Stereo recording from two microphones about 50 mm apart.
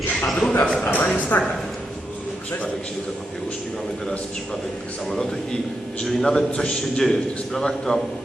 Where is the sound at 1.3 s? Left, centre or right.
Left.